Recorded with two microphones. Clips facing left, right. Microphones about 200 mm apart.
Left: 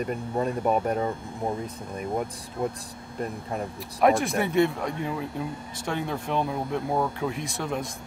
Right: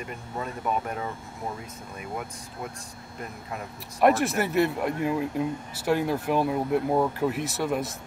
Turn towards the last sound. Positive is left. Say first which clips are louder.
# right 3 dB
turn(degrees=-5)  # may be behind; listen again after turning